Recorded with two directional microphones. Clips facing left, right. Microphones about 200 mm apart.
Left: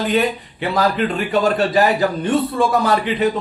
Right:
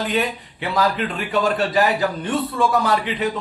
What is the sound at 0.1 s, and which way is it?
A man's voice, 40° left (ahead or behind).